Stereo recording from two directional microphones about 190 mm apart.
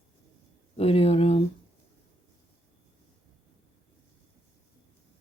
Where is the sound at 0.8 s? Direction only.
30° left (ahead or behind).